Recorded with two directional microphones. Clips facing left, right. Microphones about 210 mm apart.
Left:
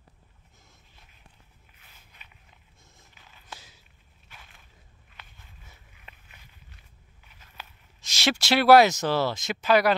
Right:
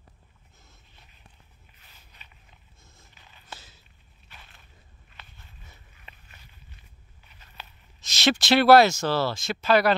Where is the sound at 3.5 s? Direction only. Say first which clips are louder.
Right 1 dB; 15° left (ahead or behind).